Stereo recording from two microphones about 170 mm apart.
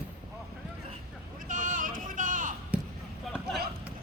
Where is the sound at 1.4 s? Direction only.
50° right (ahead or behind).